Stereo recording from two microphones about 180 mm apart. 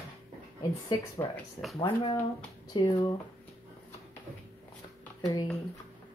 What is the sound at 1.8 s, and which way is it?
Speech, 25° left (ahead or behind).